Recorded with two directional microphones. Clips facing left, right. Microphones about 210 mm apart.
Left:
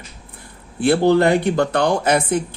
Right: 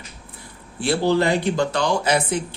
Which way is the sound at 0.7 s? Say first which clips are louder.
Left 5 dB; 55° left (ahead or behind).